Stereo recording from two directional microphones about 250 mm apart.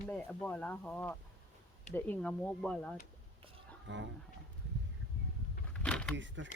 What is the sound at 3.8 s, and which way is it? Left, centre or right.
Speech, right.